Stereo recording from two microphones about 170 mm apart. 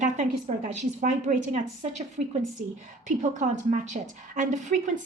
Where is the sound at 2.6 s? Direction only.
50° right (ahead or behind).